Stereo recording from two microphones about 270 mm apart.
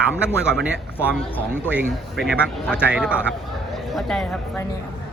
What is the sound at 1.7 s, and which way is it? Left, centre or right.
Speech, centre.